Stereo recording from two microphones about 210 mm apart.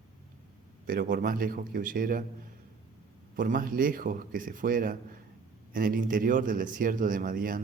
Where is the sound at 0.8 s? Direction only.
40° right (ahead or behind).